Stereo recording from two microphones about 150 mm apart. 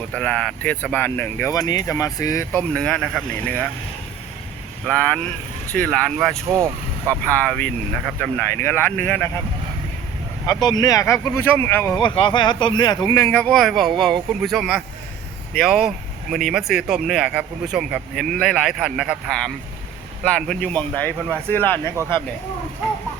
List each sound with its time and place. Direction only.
0.1 s speech: 5° left (ahead or behind)
2.7 s speech: 5° left (ahead or behind)
4.9 s speech: 10° left (ahead or behind)
10.4 s speech: 25° left (ahead or behind)
11.9 s speech: 35° left (ahead or behind); by 21.9 s 15° left (ahead or behind)